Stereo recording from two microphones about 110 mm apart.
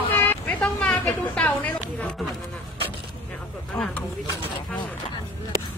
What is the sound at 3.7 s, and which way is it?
Speech, 5° left (ahead or behind).